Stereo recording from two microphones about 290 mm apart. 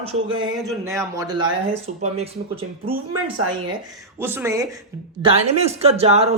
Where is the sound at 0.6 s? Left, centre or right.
Centre.